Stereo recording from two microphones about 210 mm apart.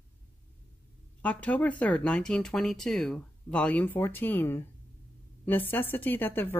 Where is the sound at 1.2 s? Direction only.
5° left (ahead or behind).